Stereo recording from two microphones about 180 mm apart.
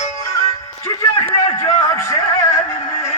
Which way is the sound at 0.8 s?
20° left (ahead or behind).